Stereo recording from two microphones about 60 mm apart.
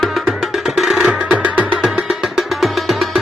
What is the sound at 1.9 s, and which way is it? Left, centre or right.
Music, centre.